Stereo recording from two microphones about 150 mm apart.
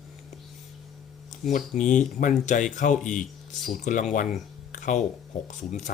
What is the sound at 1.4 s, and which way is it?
Speech, 55° left (ahead or behind).